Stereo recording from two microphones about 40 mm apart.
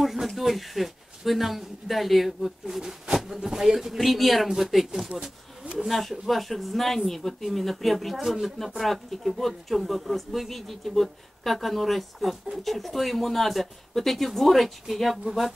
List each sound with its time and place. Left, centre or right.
0.0 s a sound: centre
0.3 s speech: centre
2.8 s speech: centre
5.2 s a sound: right
5.9 s speech: centre
8.2 s speech: centre
8.5 s speech: centre